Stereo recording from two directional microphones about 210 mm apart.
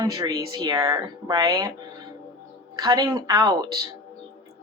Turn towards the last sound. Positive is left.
turn(degrees=-20)  # may be behind; listen again after turning